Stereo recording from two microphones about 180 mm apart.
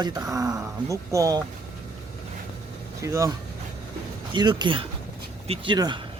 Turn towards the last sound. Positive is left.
turn(degrees=-25)  # may be behind; listen again after turning